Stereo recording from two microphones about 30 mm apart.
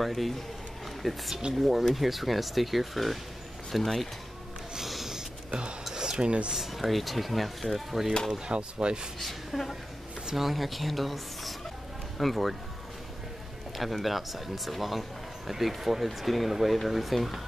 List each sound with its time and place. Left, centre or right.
0.0 s speech: centre
4.8 s snort: centre
5.5 s speech: right
5.9 s a sound: right
6.5 s speech: centre
8.5 s speech: right
9.2 s speech: centre
13.7 s speech: centre